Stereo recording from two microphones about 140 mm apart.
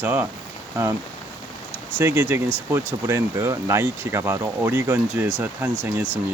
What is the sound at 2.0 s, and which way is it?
Speech, 15° right (ahead or behind).